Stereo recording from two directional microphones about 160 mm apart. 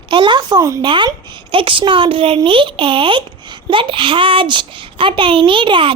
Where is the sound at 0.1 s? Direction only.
30° right (ahead or behind).